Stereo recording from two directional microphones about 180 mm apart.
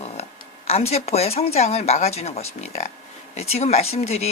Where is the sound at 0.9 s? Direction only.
35° left (ahead or behind).